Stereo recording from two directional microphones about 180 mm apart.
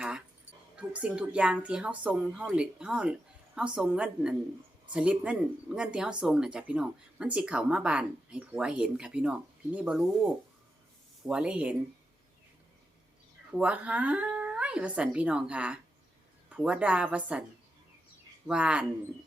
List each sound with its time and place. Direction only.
0.8 s speech: 5° right (ahead or behind)
13.5 s speech: 5° right (ahead or behind)
18.4 s speech: 5° right (ahead or behind)